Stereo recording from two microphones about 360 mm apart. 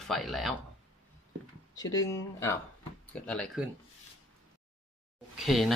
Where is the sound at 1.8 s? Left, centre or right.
Centre.